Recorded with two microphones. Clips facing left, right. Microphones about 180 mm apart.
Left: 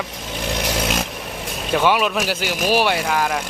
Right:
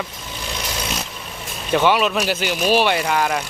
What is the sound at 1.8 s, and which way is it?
Speech, 10° left (ahead or behind).